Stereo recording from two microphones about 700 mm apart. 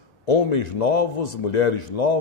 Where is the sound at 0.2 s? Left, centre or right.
Left.